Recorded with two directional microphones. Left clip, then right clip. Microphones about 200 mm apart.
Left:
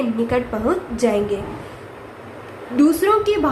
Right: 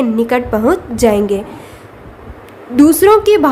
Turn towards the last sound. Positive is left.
turn(degrees=-55)  # may be behind; listen again after turning